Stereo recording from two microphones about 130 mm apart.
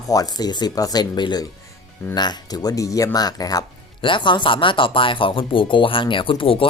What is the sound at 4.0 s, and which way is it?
Speech, 40° left (ahead or behind).